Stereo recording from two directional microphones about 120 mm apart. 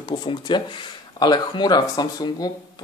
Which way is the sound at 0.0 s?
35° left (ahead or behind).